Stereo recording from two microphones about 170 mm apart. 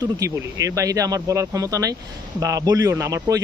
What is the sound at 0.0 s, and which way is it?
Speech, 20° right (ahead or behind).